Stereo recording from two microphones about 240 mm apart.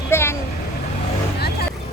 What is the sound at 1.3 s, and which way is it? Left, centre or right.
Vehicle, left.